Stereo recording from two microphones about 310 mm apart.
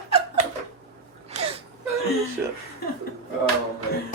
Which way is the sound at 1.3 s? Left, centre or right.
Right.